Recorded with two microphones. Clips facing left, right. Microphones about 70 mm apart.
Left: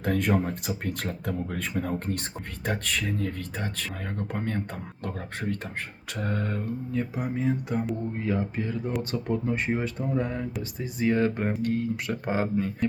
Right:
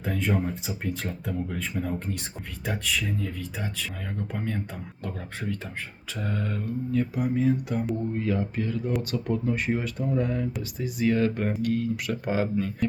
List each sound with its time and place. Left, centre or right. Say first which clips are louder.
0.0 s speech: left 2 dB; left
6.9 s speech: right 5 dB; left